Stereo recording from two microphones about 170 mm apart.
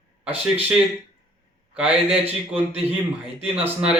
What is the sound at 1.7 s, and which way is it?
Speech, 5° right (ahead or behind).